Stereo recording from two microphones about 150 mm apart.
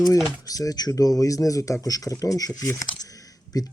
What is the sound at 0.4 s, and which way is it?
Speech, 25° left (ahead or behind).